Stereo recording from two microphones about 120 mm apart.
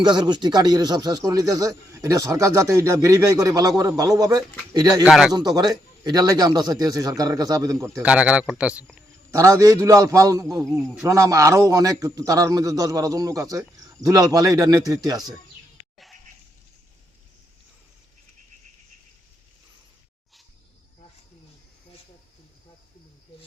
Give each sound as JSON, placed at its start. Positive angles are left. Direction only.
{"t": 0.0, "sound": "speech", "side_deg": -40}
{"t": 5.0, "sound": "speech", "side_deg": -5}
{"t": 5.3, "sound": "speech", "side_deg": -35}
{"t": 8.0, "sound": "speech", "side_deg": -10}
{"t": 9.3, "sound": "a man's voice", "side_deg": -25}